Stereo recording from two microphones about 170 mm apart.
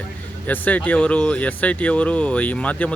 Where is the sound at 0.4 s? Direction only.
10° left (ahead or behind).